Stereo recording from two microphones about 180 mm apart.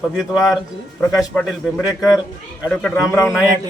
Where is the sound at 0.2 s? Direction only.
Centre (ahead or behind).